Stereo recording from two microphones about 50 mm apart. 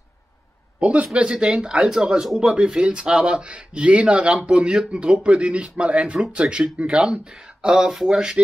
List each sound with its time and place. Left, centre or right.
0.7 s a man's voice: right
6.4 s speech: centre